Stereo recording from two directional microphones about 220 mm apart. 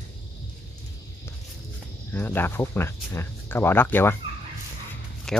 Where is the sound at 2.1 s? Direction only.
10° left (ahead or behind).